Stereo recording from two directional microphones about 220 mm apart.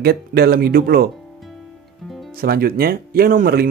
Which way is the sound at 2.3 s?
45° right (ahead or behind).